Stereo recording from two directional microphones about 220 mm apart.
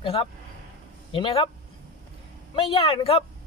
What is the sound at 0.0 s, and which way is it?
A man's voice, 25° left (ahead or behind).